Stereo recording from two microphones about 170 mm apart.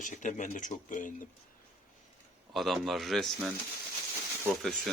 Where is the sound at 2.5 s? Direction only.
Centre (ahead or behind).